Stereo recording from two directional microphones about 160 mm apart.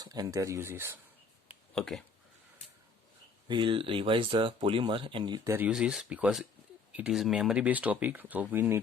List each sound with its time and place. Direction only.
0.0 s speech: 25° right (ahead or behind)
1.7 s speech: 5° left (ahead or behind)
3.5 s speech: 30° right (ahead or behind)
5.5 s speech: 10° right (ahead or behind)